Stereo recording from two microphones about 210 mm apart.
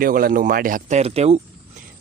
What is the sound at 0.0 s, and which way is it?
Speech, 45° right (ahead or behind).